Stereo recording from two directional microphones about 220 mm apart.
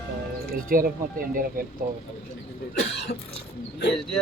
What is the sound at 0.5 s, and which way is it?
Speech, 40° right (ahead or behind).